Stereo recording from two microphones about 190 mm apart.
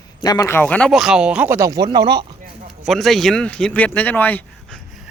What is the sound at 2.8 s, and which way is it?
Speech, centre (ahead or behind).